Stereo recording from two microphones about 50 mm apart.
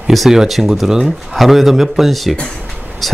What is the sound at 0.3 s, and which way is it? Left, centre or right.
Speech, centre.